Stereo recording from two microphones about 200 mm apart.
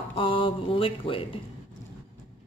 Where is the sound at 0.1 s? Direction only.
25° left (ahead or behind).